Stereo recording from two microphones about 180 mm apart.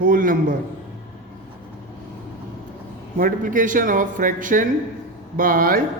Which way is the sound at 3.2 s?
50° right (ahead or behind).